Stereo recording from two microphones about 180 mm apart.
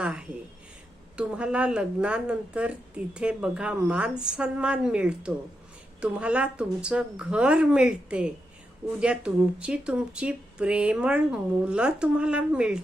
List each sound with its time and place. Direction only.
0.0 s speech: 5° right (ahead or behind)